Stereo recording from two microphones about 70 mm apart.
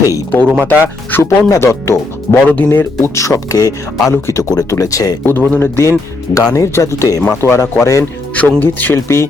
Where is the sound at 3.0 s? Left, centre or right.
Left.